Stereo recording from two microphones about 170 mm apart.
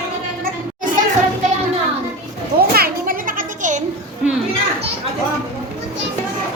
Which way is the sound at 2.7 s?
60° right (ahead or behind).